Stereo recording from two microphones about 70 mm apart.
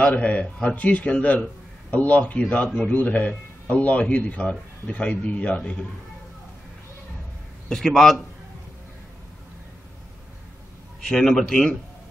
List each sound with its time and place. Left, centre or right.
0.0 s a man's voice: left
7.7 s a man's voice: centre
11.0 s a man's voice: centre